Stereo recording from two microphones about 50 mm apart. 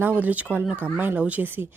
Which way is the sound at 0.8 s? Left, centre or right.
Right.